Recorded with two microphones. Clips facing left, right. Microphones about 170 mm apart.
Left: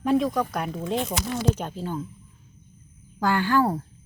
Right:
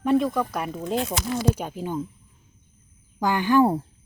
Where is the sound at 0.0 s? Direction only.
Centre (ahead or behind).